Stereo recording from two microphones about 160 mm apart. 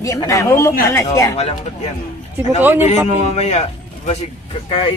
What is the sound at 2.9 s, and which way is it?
A man's voice, 45° left (ahead or behind).